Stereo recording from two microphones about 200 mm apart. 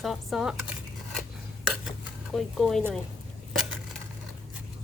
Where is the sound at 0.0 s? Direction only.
Centre (ahead or behind).